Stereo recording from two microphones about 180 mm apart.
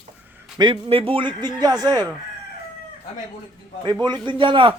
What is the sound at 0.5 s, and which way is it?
A man's voice, 25° right (ahead or behind).